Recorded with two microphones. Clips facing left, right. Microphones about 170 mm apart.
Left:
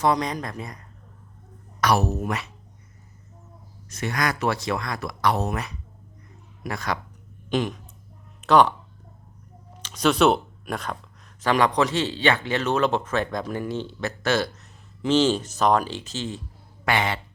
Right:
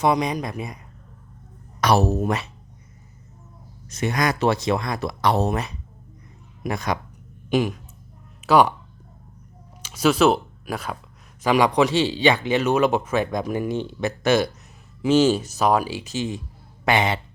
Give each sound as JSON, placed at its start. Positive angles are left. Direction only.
{"t": 0.0, "sound": "speech", "side_deg": -15}
{"t": 1.8, "sound": "speech", "side_deg": -25}
{"t": 3.8, "sound": "speech", "side_deg": -20}
{"t": 7.5, "sound": "speech", "side_deg": -10}
{"t": 9.8, "sound": "speech", "side_deg": -5}